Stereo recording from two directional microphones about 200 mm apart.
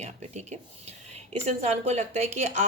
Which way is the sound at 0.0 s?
35° right (ahead or behind).